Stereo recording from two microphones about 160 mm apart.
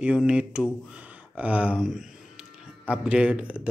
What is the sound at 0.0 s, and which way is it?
Speech, 5° right (ahead or behind).